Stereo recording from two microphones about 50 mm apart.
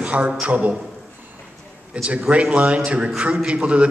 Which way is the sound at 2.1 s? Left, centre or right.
Right.